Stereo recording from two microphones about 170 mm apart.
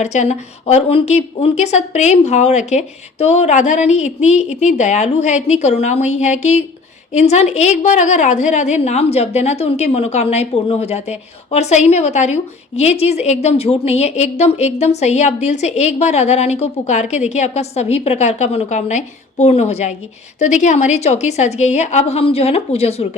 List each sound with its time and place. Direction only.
0.0 s a woman's voice: 45° left (ahead or behind)